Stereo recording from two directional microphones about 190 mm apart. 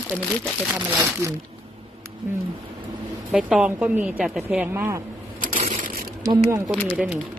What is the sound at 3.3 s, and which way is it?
A woman's voice, 5° right (ahead or behind).